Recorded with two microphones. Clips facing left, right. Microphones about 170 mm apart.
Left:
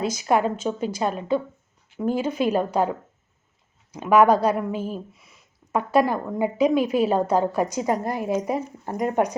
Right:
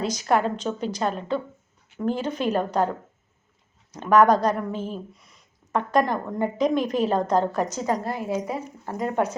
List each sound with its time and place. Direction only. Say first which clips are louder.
0.0 s speech: left 1 dB; 10° left (ahead or behind)
3.9 s speech: left 1 dB; 10° left (ahead or behind)